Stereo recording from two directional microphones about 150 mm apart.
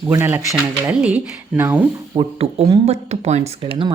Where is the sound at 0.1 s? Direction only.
15° right (ahead or behind).